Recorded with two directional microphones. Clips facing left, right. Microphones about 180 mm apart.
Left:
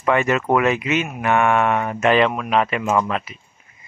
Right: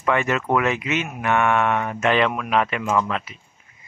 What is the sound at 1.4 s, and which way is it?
Speech, 35° left (ahead or behind).